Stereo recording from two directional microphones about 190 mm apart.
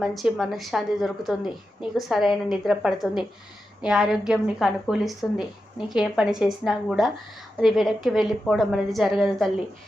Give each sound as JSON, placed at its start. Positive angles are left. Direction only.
{"t": 0.0, "sound": "a woman's voice", "side_deg": 0}